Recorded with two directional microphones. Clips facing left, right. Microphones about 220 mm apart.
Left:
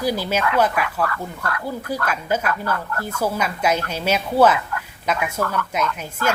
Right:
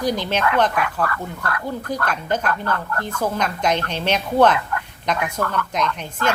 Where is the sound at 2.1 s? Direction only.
5° left (ahead or behind).